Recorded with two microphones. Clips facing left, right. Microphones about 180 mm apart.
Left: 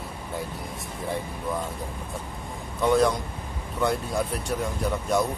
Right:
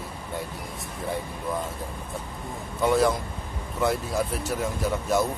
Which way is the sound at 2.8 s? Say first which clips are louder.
Left 1 dB; 5° right (ahead or behind).